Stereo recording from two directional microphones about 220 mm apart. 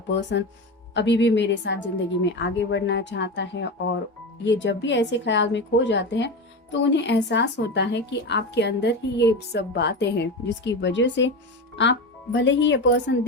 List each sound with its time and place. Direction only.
0.1 s a woman's voice: 55° left (ahead or behind)